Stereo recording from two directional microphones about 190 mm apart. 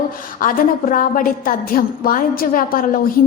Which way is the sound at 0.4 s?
45° left (ahead or behind).